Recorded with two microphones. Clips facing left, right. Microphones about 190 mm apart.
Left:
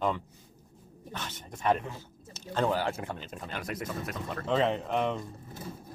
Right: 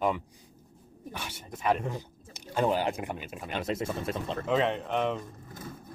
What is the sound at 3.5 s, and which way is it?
Speech, 25° right (ahead or behind).